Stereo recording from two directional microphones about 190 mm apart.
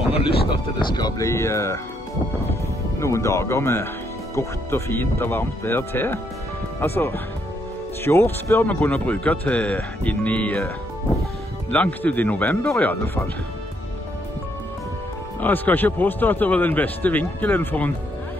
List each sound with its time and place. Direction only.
0.5 s a man's voice: 20° left (ahead or behind)
3.0 s a man's voice: 15° left (ahead or behind)
11.7 s a man's voice: 10° left (ahead or behind)
15.4 s a man's voice: 10° left (ahead or behind)